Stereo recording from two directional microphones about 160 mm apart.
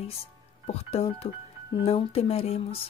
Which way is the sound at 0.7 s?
40° left (ahead or behind).